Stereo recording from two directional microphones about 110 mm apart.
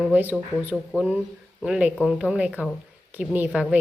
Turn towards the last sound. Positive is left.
turn(degrees=-10)  # may be behind; listen again after turning